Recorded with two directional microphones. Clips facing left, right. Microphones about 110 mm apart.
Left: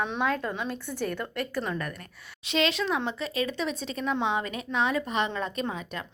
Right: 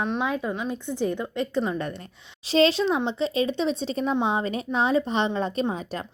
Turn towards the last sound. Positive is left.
turn(degrees=-35)  # may be behind; listen again after turning